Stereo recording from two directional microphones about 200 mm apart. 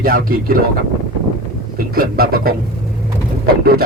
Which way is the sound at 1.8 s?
45° right (ahead or behind).